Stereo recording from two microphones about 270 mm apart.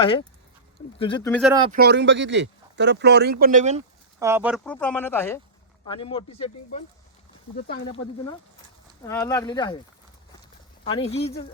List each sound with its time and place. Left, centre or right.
0.0 s speech: centre
1.3 s speech: centre
1.7 s speech: right
4.2 s speech: centre; by 6.8 s left
9.0 s speech: centre
10.8 s speech: left